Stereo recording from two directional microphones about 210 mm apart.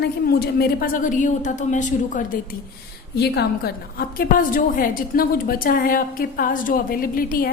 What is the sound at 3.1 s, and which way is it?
A woman's voice, 50° left (ahead or behind).